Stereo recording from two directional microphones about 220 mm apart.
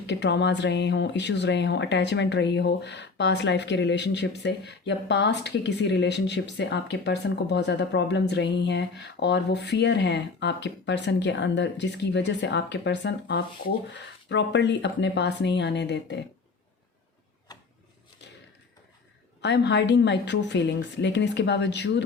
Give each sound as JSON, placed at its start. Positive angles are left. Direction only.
{"t": 0.1, "sound": "speech", "side_deg": 50}
{"t": 19.4, "sound": "speech", "side_deg": 50}